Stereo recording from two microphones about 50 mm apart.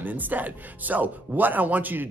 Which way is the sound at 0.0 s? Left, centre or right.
Right.